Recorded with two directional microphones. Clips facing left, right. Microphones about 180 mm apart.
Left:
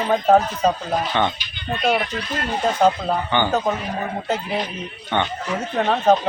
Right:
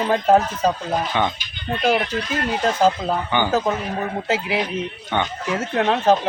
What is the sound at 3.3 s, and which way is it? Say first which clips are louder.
Speech: right 1 dB; 10° right (ahead or behind).